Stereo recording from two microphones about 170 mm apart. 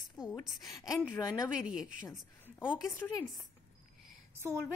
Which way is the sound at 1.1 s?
20° left (ahead or behind).